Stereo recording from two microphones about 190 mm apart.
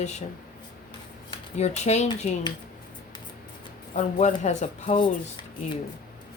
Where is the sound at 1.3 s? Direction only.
35° left (ahead or behind).